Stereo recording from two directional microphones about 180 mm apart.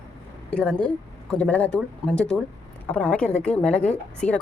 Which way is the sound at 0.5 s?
5° left (ahead or behind).